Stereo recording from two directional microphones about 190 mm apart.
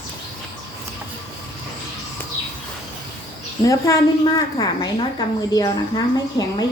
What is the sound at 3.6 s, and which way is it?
A woman's voice, 15° left (ahead or behind).